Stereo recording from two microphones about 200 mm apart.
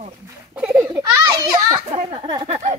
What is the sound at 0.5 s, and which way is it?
Children playing, 5° right (ahead or behind).